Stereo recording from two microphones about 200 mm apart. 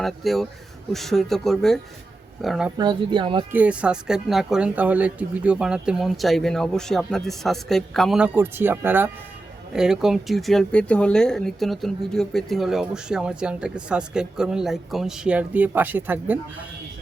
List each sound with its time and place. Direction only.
0.0 s speech: centre (ahead or behind)
2.7 s speech: 20° right (ahead or behind)
3.5 s speech: 5° right (ahead or behind)